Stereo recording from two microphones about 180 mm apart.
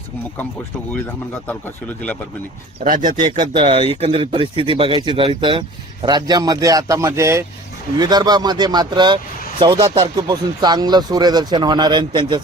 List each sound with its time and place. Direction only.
2.8 s a man's voice: 45° right (ahead or behind)
3.5 s speech: 30° right (ahead or behind)